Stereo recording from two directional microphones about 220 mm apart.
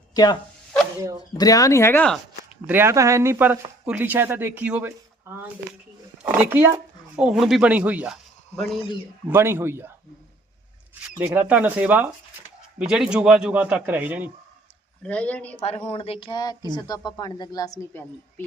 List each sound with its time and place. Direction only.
0.1 s speech: 15° left (ahead or behind)
1.4 s speech: 15° left (ahead or behind)
2.6 s speech: 10° right (ahead or behind)
6.2 s speech: 10° right (ahead or behind)
11.2 s a man's voice: 10° right (ahead or behind)
15.0 s a man's voice: 5° left (ahead or behind)
15.9 s speech: 25° left (ahead or behind); by 18.1 s 10° left (ahead or behind)